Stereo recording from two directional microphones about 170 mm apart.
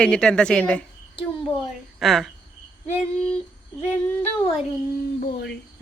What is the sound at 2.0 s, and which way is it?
A woman's voice, centre (ahead or behind).